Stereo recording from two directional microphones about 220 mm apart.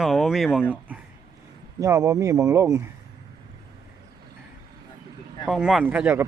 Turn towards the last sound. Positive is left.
turn(degrees=-5)  # may be behind; listen again after turning